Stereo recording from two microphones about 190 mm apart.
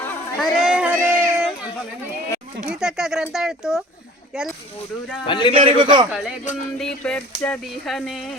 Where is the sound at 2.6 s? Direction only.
5° right (ahead or behind).